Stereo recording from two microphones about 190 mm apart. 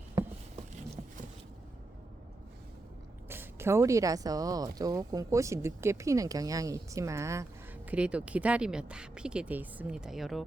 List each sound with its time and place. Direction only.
3.2 s speech: 10° right (ahead or behind)